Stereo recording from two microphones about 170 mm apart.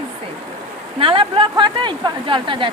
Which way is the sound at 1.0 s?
30° right (ahead or behind).